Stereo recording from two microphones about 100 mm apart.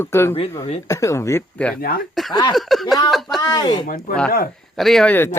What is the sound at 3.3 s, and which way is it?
Speech, 40° left (ahead or behind).